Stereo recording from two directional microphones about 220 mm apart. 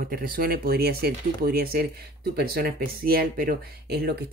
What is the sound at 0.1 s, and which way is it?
Speech, 40° right (ahead or behind).